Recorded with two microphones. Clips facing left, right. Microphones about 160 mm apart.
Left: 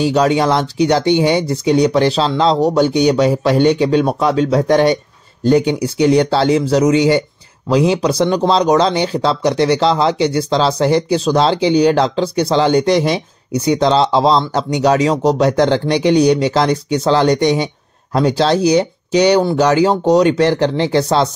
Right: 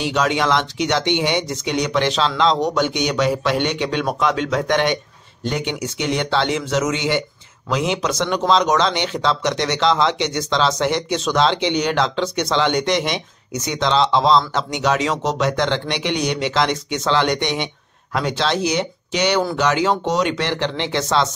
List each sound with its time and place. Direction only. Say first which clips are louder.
0.0 s speech: left 6 dB; 40° left (ahead or behind)